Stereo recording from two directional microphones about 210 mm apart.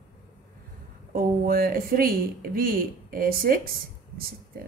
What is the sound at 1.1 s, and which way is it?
Speech, 45° right (ahead or behind).